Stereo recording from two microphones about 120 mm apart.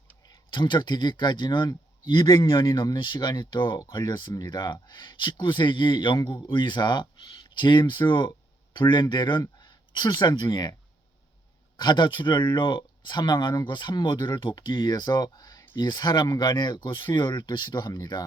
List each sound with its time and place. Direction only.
0.3 s speech: 40° left (ahead or behind)
11.8 s speech: 40° left (ahead or behind)